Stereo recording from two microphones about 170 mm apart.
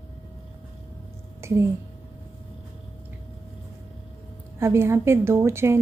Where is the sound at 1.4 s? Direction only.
15° right (ahead or behind).